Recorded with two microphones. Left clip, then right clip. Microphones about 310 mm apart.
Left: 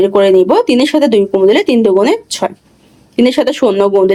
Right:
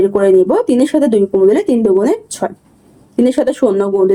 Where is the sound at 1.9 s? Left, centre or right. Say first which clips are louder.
Left 3 dB; left.